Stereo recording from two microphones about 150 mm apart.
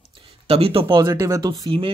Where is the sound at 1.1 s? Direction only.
20° right (ahead or behind).